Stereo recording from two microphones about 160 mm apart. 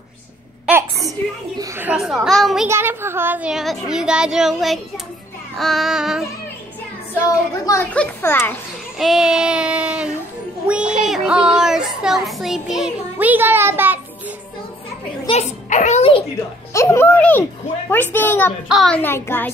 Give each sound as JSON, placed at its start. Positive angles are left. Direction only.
{"t": 0.7, "sound": "a sound", "side_deg": -5}
{"t": 1.6, "sound": "child singing", "side_deg": -15}
{"t": 2.7, "sound": "child singing", "side_deg": -15}
{"t": 7.6, "sound": "a woman's voice", "side_deg": 20}
{"t": 8.9, "sound": "child singing", "side_deg": 0}
{"t": 10.7, "sound": "music", "side_deg": -5}
{"t": 11.1, "sound": "child singing", "side_deg": -5}
{"t": 15.2, "sound": "a child's voice", "side_deg": 40}
{"t": 16.7, "sound": "speech", "side_deg": 15}
{"t": 18.7, "sound": "child singing", "side_deg": 0}
{"t": 18.9, "sound": "speech", "side_deg": 15}